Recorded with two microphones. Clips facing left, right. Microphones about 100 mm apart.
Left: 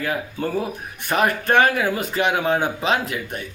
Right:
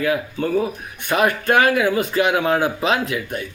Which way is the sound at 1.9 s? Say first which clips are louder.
Right 4 dB; 5° left (ahead or behind).